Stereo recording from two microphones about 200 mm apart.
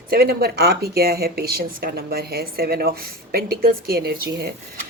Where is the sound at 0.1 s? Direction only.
50° right (ahead or behind).